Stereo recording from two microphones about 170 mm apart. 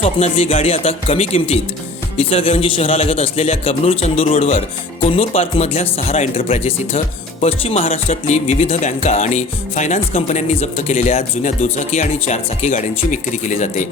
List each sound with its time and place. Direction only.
0.0 s a man's voice: 35° left (ahead or behind)